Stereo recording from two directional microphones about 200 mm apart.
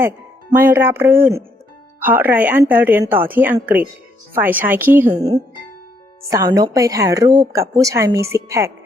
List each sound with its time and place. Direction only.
0.5 s speech: 10° right (ahead or behind)
6.6 s speech: 15° right (ahead or behind)